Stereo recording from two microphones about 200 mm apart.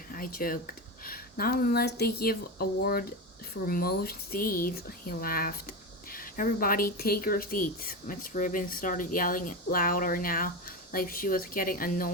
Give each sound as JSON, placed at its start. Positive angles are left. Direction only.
{"t": 0.1, "sound": "speech", "side_deg": 45}